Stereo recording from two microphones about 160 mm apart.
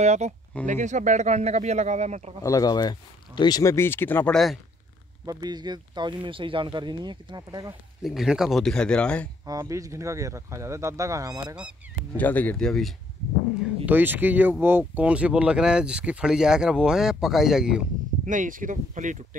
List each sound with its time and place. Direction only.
0.0 s a man's voice: 45° right (ahead or behind)
2.4 s speech: 25° left (ahead or behind)
5.2 s speech: 25° right (ahead or behind)
8.0 s speech: centre (ahead or behind)
9.5 s speech: 20° right (ahead or behind)
12.2 s speech: 10° left (ahead or behind)
13.8 s speech: 10° right (ahead or behind)
18.2 s speech: 55° right (ahead or behind)